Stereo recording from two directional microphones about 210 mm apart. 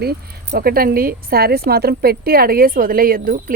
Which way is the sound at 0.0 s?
50° right (ahead or behind).